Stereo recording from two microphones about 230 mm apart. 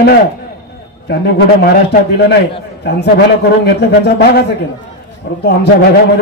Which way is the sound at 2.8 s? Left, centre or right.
Left.